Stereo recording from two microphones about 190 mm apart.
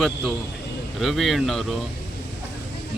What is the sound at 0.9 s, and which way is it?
Speech, centre (ahead or behind).